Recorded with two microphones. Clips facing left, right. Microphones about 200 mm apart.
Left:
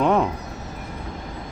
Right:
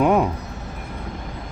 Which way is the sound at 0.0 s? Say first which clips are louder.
Right 2 dB; 10° right (ahead or behind).